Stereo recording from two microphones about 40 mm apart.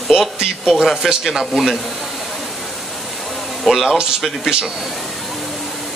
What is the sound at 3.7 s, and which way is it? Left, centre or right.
Speech, centre.